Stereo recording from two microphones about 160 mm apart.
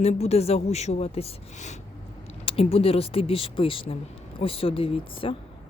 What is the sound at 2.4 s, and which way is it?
Speech, 35° left (ahead or behind).